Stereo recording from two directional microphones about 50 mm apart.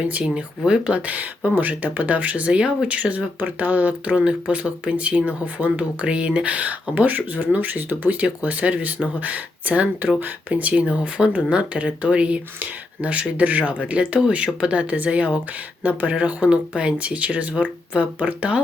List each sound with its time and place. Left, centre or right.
0.0 s speech: right
6.1 s speech: right